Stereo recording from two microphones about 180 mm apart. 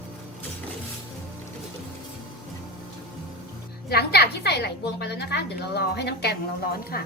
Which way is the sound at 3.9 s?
60° left (ahead or behind).